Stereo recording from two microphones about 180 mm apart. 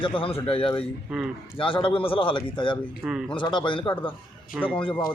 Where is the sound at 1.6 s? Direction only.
30° left (ahead or behind).